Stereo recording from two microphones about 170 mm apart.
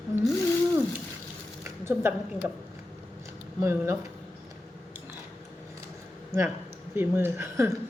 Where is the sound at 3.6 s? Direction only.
15° right (ahead or behind).